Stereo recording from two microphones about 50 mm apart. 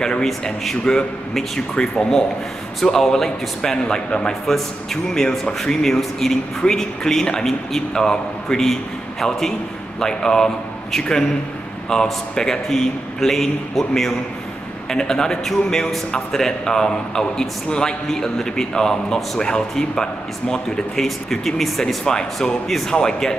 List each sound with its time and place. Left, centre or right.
0.0 s a man's voice: centre
9.9 s a man's voice: centre
21.8 s a man's voice: centre